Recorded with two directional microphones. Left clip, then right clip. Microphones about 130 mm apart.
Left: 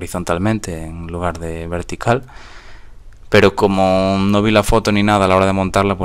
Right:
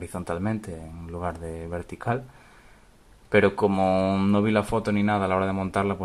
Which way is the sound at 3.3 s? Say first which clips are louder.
Left 9 dB; 30° left (ahead or behind).